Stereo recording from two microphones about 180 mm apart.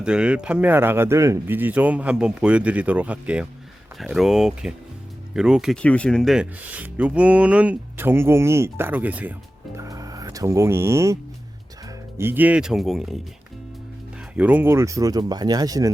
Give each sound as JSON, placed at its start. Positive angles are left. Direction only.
{"t": 0.0, "sound": "speech", "side_deg": -5}
{"t": 9.7, "sound": "music", "side_deg": -20}
{"t": 12.1, "sound": "speech", "side_deg": -10}
{"t": 14.3, "sound": "speech", "side_deg": -10}